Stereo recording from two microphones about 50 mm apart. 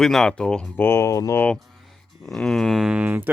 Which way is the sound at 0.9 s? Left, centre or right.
Left.